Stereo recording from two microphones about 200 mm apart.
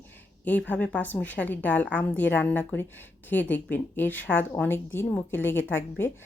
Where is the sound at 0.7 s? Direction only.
10° left (ahead or behind).